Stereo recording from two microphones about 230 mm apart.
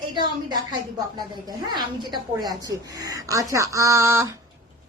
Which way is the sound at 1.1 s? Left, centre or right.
Centre.